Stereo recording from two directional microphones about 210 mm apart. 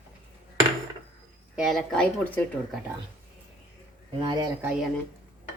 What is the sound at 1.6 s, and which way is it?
Speech, centre (ahead or behind).